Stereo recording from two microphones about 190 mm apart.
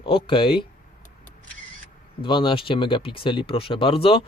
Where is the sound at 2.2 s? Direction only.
25° left (ahead or behind).